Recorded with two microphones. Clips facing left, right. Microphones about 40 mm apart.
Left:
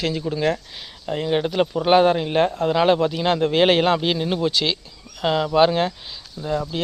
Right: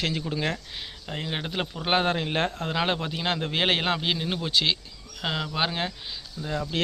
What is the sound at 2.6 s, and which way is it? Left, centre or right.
Speech, centre.